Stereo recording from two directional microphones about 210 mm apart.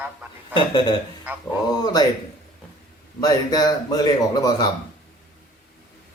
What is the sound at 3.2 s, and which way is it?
Speech, 20° left (ahead or behind).